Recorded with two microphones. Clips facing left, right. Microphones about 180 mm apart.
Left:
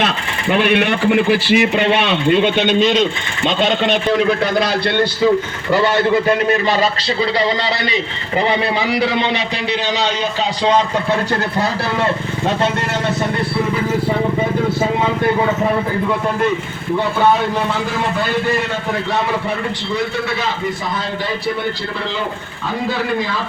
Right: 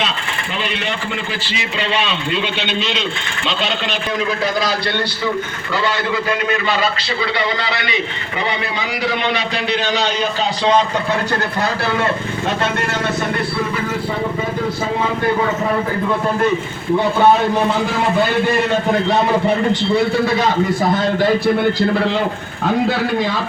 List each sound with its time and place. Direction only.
0.5 s a man's voice: 60° left (ahead or behind)
7.2 s a man's voice: 35° left (ahead or behind)
9.0 s a man's voice: 25° left (ahead or behind)
19.9 s a man's voice: 30° right (ahead or behind)